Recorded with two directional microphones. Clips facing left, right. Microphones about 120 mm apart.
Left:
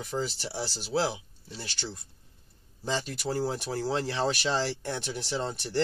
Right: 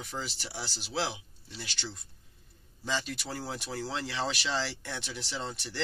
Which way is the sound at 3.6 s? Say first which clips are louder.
Left 6 dB; 50° left (ahead or behind).